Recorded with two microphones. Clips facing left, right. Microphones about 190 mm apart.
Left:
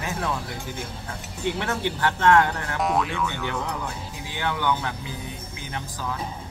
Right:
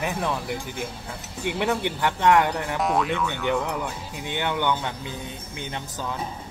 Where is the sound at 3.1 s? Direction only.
10° left (ahead or behind).